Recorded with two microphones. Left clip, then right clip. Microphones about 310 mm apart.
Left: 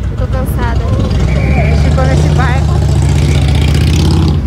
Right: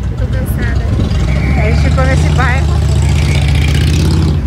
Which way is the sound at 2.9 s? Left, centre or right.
Left.